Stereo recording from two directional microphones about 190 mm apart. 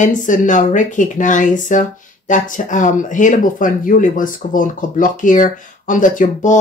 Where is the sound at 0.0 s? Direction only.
45° left (ahead or behind).